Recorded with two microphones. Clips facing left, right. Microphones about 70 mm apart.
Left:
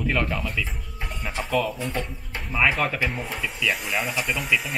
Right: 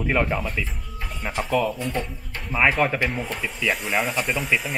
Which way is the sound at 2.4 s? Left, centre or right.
Centre.